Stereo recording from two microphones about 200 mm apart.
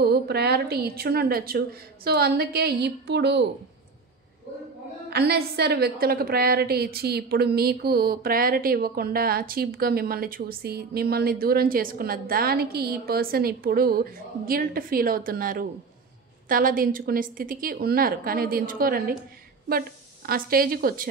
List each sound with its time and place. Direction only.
0.0 s a woman's voice: 55° right (ahead or behind)
5.1 s a woman's voice: 55° right (ahead or behind)
20.2 s a woman's voice: 45° right (ahead or behind)